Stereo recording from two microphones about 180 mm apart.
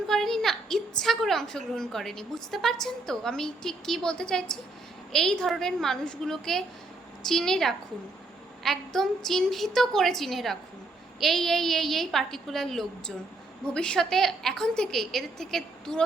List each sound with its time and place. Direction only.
0.1 s a woman's voice: centre (ahead or behind)